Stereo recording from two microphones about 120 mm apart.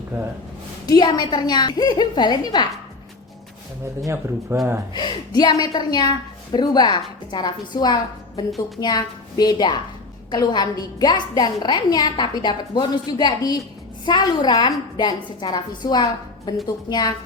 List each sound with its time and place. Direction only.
0.9 s a woman's voice: 35° left (ahead or behind)
4.0 s speech: 25° right (ahead or behind)
4.9 s a woman's voice: 35° left (ahead or behind)